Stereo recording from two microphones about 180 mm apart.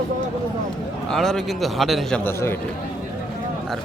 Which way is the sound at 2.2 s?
10° left (ahead or behind).